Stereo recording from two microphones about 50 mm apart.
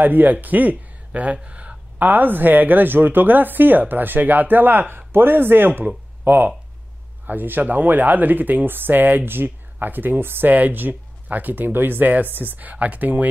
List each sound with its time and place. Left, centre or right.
0.0 s speech: right
2.0 s speech: right